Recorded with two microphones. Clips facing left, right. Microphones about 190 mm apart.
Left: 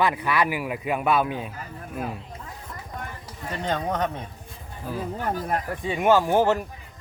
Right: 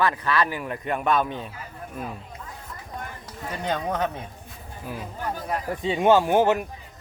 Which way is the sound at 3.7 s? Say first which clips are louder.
Even; 10° right (ahead or behind).